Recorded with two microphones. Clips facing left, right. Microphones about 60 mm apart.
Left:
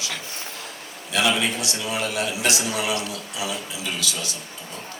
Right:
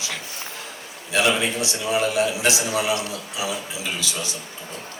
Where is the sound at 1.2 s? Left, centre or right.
Right.